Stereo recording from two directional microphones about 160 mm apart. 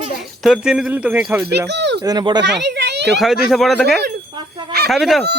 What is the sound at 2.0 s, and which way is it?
Speech, 25° right (ahead or behind).